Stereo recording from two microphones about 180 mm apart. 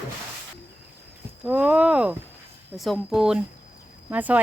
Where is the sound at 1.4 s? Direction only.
5° right (ahead or behind).